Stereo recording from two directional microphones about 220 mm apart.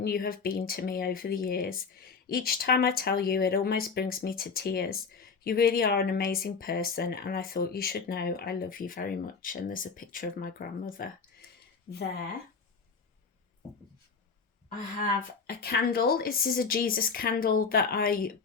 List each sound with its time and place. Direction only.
0.0 s speech: 40° left (ahead or behind)
15.4 s a woman's voice: 45° left (ahead or behind)